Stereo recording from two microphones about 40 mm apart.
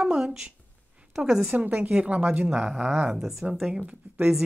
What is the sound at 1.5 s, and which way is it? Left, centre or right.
A woman's voice, right.